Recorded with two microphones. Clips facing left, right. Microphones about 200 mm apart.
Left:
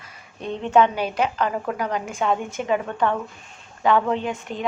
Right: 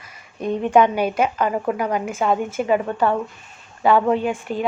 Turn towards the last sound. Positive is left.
turn(degrees=-5)  # may be behind; listen again after turning